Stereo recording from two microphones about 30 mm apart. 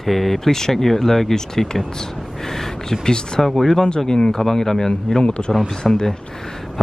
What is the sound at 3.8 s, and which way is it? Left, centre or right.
Speech, left.